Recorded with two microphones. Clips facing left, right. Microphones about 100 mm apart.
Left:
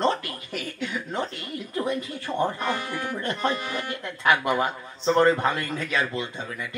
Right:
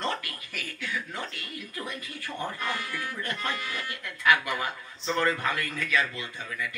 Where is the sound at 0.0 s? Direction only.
25° left (ahead or behind).